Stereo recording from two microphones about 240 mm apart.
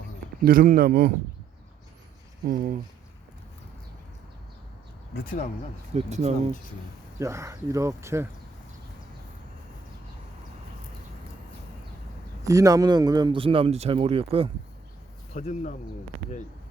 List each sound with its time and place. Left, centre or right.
0.4 s speech: right
2.5 s speech: right
5.2 s speech: left
5.9 s speech: right
7.2 s speech: centre
12.5 s speech: centre
15.3 s speech: left